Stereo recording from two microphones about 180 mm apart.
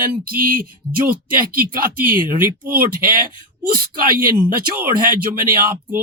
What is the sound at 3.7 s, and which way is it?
Speech, 50° right (ahead or behind).